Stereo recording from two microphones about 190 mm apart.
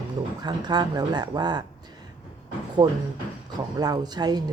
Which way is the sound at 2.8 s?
20° right (ahead or behind).